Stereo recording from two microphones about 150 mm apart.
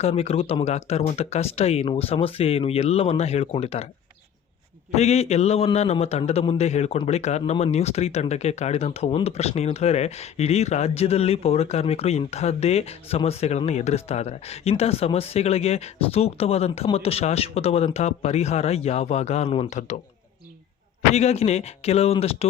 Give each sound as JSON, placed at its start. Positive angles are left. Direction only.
{"t": 0.0, "sound": "a man's voice", "side_deg": 40}
{"t": 4.9, "sound": "a man's voice", "side_deg": 45}
{"t": 21.1, "sound": "a man's voice", "side_deg": 45}